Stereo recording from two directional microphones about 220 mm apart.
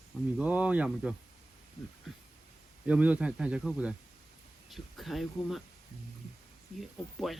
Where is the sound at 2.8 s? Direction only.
5° right (ahead or behind).